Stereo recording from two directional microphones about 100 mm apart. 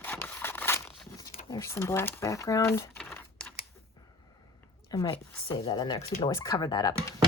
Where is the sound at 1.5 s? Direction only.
30° left (ahead or behind).